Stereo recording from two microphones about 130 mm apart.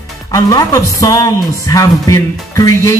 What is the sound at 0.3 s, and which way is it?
Speech, 25° left (ahead or behind).